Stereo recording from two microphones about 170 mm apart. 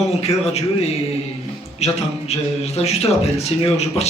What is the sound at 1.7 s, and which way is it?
A man's voice, 40° left (ahead or behind).